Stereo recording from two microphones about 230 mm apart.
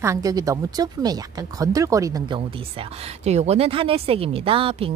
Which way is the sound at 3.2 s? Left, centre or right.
Right.